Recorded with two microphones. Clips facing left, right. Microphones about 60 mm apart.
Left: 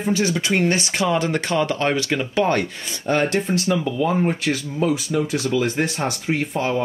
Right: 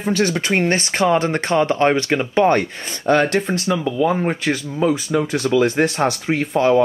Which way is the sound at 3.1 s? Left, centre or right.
Right.